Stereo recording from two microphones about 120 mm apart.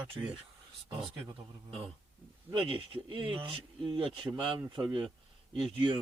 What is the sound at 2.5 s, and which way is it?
Speech, 45° right (ahead or behind).